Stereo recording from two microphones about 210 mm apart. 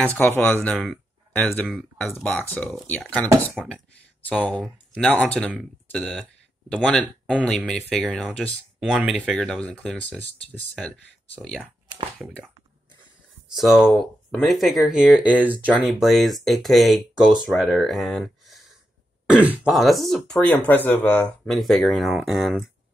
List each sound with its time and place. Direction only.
0.0 s speech: 10° left (ahead or behind)
13.6 s speech: centre (ahead or behind)